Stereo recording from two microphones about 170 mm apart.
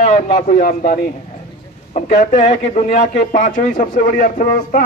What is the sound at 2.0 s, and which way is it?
A man's voice, 45° left (ahead or behind).